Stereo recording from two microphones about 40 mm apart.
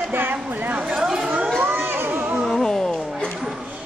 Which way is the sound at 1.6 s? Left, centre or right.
Right.